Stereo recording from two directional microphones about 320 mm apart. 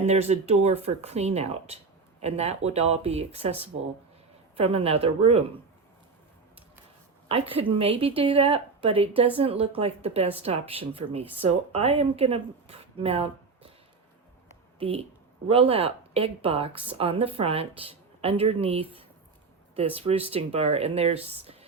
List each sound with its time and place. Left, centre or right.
0.0 s speech: centre
7.3 s a woman's voice: centre
14.8 s a woman's voice: centre